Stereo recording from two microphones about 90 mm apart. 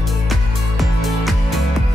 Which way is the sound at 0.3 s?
Centre (ahead or behind).